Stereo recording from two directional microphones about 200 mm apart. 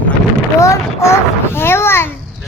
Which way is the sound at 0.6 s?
15° left (ahead or behind).